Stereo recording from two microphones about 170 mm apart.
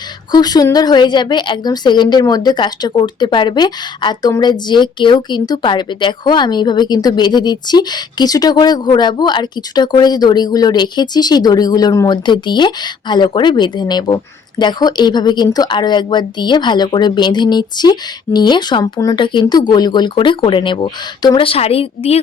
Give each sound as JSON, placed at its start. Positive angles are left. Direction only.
{"t": 0.3, "sound": "a woman's voice", "side_deg": 25}